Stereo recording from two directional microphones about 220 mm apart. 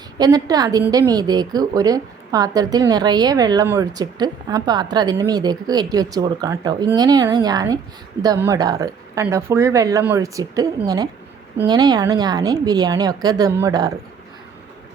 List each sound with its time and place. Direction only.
0.2 s a woman's voice: 15° right (ahead or behind)